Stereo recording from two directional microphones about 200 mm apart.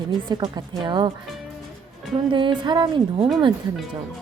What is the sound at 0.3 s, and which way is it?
Speech, 20° right (ahead or behind).